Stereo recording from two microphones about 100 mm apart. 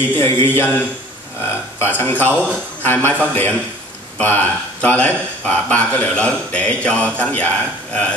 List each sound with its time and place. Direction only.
0.0 s a man's voice: 20° left (ahead or behind)